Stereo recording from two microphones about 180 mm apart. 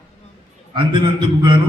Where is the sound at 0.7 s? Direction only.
25° right (ahead or behind).